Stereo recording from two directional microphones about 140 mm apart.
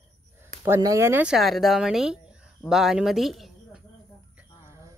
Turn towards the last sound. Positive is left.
turn(degrees=0)  # may be behind; listen again after turning